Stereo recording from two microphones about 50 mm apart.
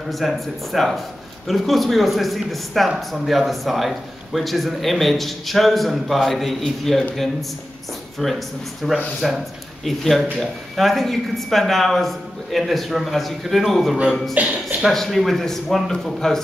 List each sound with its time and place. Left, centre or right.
0.1 s speech: centre
8.8 s speech: centre
14.3 s speech: right
14.8 s speech: centre